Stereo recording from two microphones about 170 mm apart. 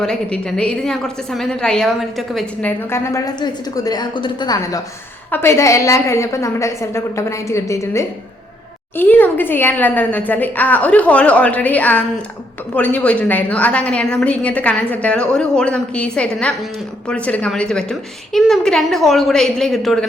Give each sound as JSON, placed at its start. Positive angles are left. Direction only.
{"t": 0.0, "sound": "a woman's voice", "side_deg": 5}